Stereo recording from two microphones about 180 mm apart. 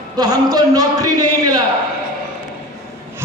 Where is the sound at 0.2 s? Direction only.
20° right (ahead or behind).